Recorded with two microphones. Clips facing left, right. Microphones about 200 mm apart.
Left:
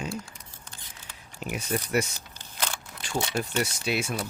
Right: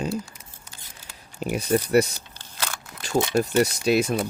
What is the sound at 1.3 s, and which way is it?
Speech, 35° right (ahead or behind).